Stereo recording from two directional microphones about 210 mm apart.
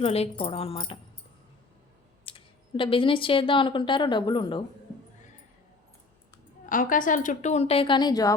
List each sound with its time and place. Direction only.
0.0 s speech: 30° left (ahead or behind)
2.2 s speech: 25° left (ahead or behind)
6.7 s a woman's voice: 40° left (ahead or behind); by 8.4 s 15° left (ahead or behind)